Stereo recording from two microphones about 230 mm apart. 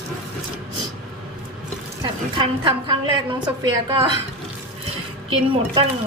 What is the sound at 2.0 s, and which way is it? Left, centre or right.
A woman's voice, centre.